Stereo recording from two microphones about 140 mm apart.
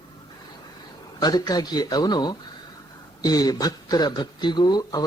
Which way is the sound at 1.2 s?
30° left (ahead or behind).